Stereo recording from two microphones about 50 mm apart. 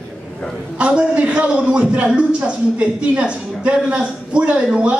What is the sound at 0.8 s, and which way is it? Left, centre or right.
A man's voice, right.